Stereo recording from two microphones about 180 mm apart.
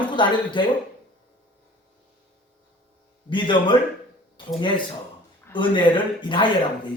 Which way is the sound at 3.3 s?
25° left (ahead or behind).